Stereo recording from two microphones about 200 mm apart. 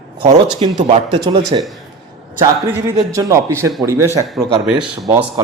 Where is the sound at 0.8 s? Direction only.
35° right (ahead or behind).